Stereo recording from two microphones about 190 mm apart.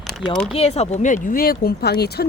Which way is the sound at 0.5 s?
35° left (ahead or behind).